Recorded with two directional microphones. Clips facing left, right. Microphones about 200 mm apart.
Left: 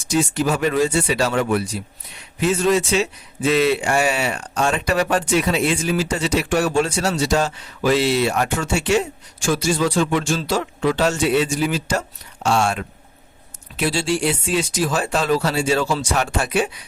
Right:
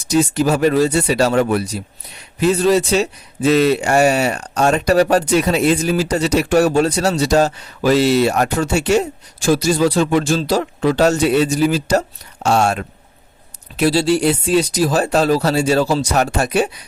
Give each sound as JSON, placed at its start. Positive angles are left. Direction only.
{"t": 0.1, "sound": "a man's voice", "side_deg": -40}